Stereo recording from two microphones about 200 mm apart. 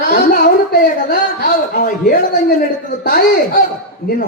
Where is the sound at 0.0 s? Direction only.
40° left (ahead or behind).